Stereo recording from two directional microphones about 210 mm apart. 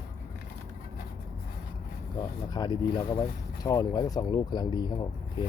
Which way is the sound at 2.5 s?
20° left (ahead or behind).